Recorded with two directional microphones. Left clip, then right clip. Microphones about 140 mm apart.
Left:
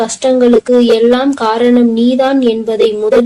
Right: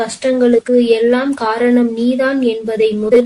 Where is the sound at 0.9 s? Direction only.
30° left (ahead or behind).